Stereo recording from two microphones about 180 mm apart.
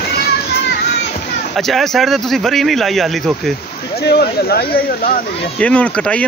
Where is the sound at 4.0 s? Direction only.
65° left (ahead or behind).